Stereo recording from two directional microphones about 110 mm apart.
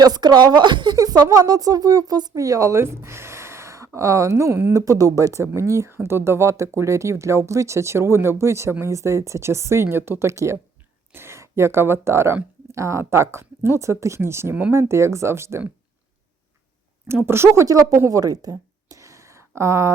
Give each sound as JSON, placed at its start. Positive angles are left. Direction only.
{"t": 0.0, "sound": "speech", "side_deg": -40}
{"t": 17.1, "sound": "speech", "side_deg": -20}
{"t": 18.0, "sound": "a sound", "side_deg": -30}